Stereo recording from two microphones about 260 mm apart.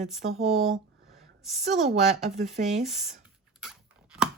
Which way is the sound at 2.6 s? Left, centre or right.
Right.